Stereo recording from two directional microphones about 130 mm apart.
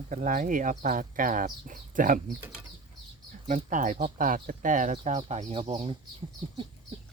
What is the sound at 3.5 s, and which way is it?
Speech, 90° right.